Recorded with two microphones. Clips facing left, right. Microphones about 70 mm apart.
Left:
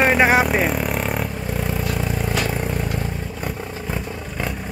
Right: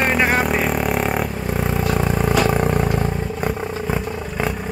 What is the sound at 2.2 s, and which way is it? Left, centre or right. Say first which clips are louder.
Vehicle: right 6 dB; right.